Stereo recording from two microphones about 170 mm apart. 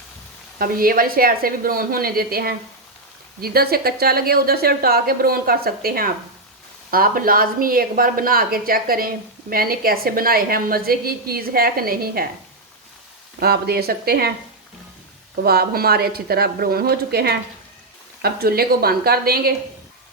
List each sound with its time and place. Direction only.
0.6 s speech: 60° right (ahead or behind)
13.4 s speech: 65° right (ahead or behind)
15.4 s speech: 65° right (ahead or behind)